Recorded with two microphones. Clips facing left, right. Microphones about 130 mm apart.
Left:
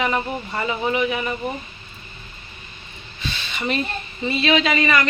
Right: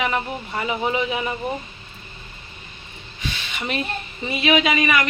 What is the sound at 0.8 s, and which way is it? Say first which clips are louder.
Speech: left 2 dB; 20° right (ahead or behind).